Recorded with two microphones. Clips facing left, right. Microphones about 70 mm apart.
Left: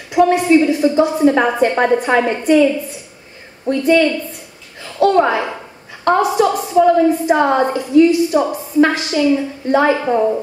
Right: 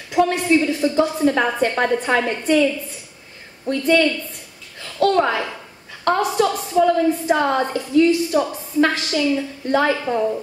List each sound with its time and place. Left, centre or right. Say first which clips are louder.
0.1 s a woman's voice: left 5 dB; centre